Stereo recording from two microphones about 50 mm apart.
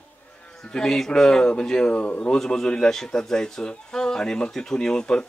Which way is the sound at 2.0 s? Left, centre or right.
Left.